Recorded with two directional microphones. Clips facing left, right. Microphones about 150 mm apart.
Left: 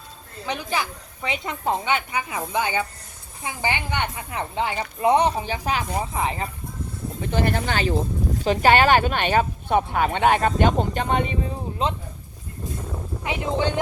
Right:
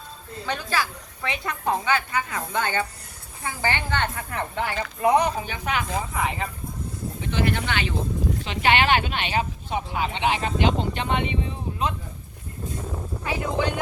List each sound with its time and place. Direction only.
0.4 s a woman's voice: 15° left (ahead or behind); by 11.5 s 40° left (ahead or behind)
11.8 s speech: 25° left (ahead or behind)
13.2 s speech: 25° left (ahead or behind)